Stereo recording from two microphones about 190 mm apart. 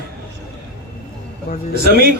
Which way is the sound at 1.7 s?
55° right (ahead or behind).